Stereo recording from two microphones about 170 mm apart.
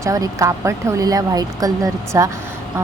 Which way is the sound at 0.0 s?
20° right (ahead or behind).